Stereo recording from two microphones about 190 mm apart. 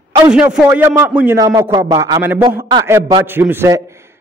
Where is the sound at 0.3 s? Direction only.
5° right (ahead or behind).